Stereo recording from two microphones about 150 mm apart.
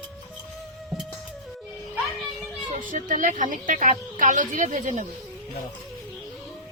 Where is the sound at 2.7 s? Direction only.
60° right (ahead or behind).